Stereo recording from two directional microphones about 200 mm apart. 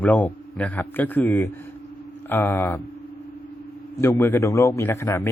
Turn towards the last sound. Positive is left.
turn(degrees=15)  # may be behind; listen again after turning